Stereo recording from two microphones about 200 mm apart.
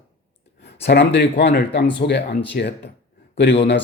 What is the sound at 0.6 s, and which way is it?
Speech, 55° left (ahead or behind).